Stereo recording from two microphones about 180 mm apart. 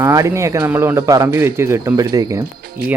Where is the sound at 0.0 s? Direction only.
20° right (ahead or behind).